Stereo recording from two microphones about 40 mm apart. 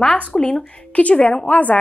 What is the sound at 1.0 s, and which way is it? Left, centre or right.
Speech, left.